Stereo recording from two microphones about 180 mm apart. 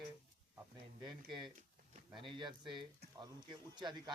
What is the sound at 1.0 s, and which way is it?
Speech, 25° right (ahead or behind).